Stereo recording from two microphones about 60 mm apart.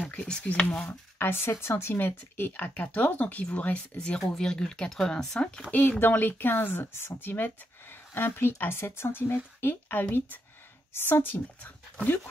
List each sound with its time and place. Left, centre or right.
0.0 s speech: left
1.1 s speech: left; by 5.4 s centre
5.7 s speech: left
11.6 s a sound: left